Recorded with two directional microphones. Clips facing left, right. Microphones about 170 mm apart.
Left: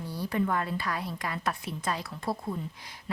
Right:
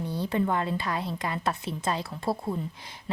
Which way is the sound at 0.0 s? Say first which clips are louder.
Right 3 dB; 25° right (ahead or behind).